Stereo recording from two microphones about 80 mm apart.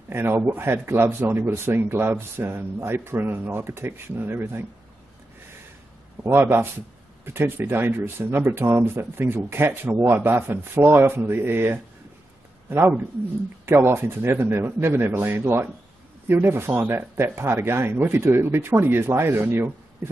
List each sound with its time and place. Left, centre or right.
0.1 s speech: right
6.2 s a man's voice: right